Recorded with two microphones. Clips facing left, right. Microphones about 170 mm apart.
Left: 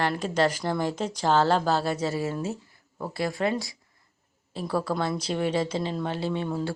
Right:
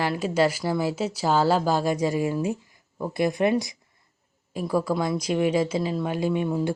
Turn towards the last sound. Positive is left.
turn(degrees=-15)  # may be behind; listen again after turning